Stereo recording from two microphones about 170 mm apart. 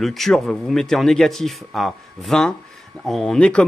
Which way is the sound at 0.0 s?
Centre (ahead or behind).